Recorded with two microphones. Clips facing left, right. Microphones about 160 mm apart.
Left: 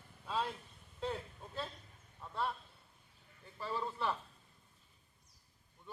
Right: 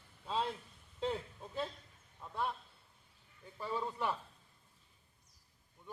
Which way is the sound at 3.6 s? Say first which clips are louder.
Right 1 dB; 15° right (ahead or behind).